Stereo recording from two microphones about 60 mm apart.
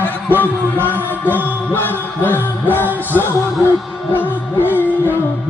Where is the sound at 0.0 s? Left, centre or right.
Left.